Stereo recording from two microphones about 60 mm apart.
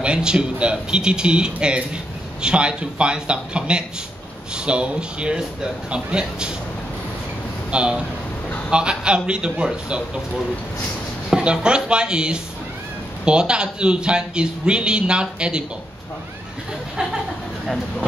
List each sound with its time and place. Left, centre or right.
0.0 s a man's voice: centre
7.7 s a man's voice: centre
11.2 s a man's voice: centre